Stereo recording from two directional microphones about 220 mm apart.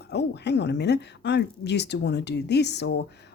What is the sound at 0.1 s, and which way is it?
Speech, 50° left (ahead or behind).